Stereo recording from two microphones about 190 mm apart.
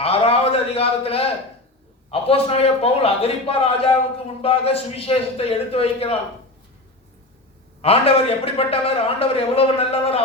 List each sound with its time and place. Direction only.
0.0 s a sound: 30° left (ahead or behind)
2.0 s a man's voice: 30° left (ahead or behind)
7.8 s a man's voice: 30° left (ahead or behind)